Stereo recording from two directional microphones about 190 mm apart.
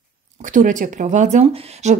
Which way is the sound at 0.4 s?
40° right (ahead or behind).